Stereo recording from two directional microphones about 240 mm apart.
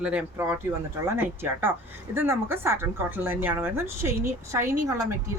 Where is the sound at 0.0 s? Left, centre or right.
Centre.